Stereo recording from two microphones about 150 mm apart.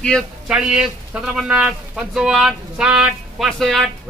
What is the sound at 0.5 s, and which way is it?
Speech, 5° right (ahead or behind).